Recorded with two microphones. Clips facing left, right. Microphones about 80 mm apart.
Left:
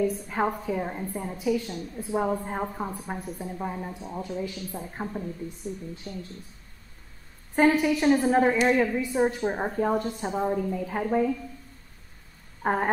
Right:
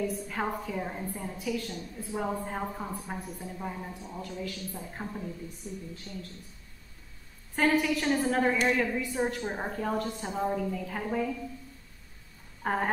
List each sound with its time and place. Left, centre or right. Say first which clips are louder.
0.0 s a woman's voice: left 6 dB; left
5.0 s a woman's voice: left 5 dB; centre
7.5 s a woman's voice: left 5 dB; centre
10.4 s a woman's voice: left 2 dB; centre
10.7 s a woman's voice: left 6 dB; left
12.6 s a woman's voice: left 4 dB; centre